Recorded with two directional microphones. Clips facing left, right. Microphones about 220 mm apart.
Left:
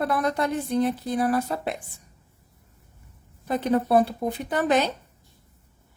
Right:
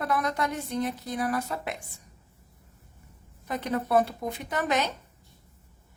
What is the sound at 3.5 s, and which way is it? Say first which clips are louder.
Speech: left 5 dB; 30° left (ahead or behind).